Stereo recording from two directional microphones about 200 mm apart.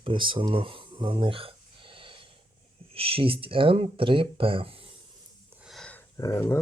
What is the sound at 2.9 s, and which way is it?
Speech, 30° right (ahead or behind).